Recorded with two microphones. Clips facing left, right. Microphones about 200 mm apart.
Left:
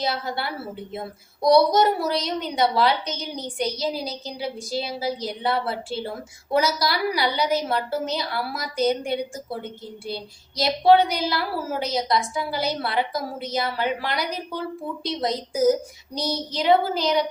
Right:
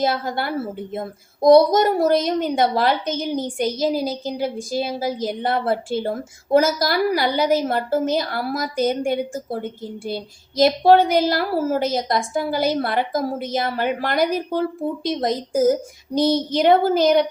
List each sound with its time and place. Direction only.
0.0 s a woman's voice: 50° right (ahead or behind)